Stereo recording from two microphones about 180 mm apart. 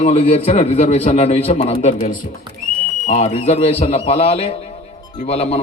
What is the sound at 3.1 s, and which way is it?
Speech, 40° left (ahead or behind).